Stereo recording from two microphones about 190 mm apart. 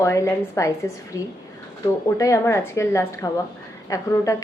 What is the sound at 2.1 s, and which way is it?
A woman's voice, 15° left (ahead or behind).